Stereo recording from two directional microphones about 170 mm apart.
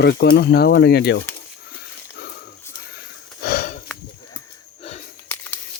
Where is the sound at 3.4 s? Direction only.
55° left (ahead or behind).